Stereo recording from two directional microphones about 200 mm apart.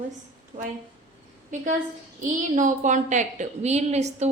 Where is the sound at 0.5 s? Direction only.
35° right (ahead or behind).